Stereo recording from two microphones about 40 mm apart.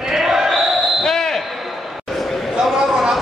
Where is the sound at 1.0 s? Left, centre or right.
Centre.